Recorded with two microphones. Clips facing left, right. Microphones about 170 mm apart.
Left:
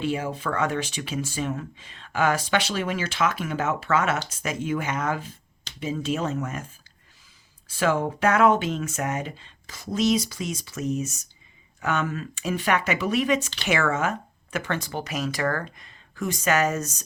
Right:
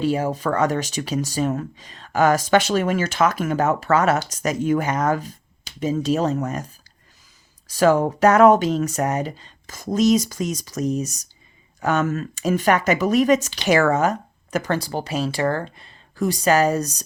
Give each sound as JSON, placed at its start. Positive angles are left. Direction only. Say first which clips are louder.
{"t": 0.0, "sound": "speech", "louder": "right 6 dB", "side_deg": -40}
{"t": 7.7, "sound": "speech", "louder": "right 7 dB", "side_deg": -40}